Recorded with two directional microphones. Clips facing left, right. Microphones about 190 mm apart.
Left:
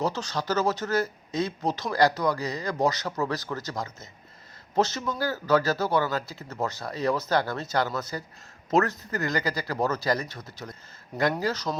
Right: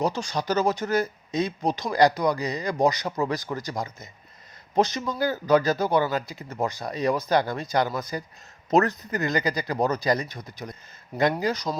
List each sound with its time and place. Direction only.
0.0 s speech: 15° right (ahead or behind)